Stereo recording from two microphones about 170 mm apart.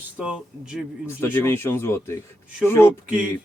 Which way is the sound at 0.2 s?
5° right (ahead or behind).